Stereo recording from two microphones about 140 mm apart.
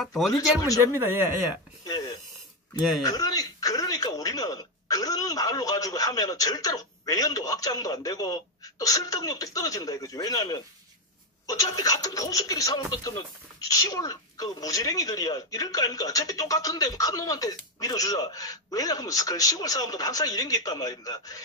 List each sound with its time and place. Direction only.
0.0 s speech: centre (ahead or behind)
0.9 s speech: 20° right (ahead or behind)
1.9 s a sound: 30° left (ahead or behind)
3.0 s speech: 25° left (ahead or behind)